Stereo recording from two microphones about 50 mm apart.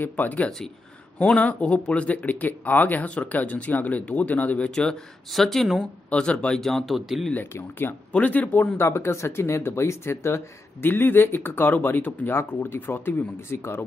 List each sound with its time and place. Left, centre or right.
0.0 s speech: left
4.6 s speech: centre
5.3 s speech: centre
6.0 s speech: left
6.9 s speech: centre
8.1 s speech: left
8.7 s speech: left
10.9 s speech: left